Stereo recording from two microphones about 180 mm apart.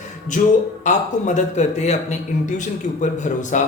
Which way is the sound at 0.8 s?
40° left (ahead or behind).